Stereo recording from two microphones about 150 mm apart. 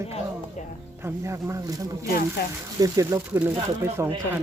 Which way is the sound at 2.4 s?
90° left.